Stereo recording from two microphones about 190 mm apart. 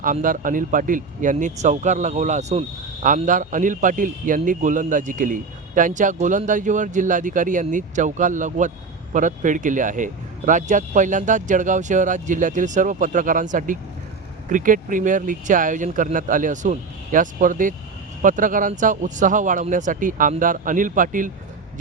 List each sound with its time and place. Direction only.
0.0 s speech: 45° right (ahead or behind)